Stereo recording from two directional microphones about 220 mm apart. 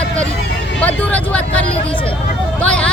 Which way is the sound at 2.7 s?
5° left (ahead or behind).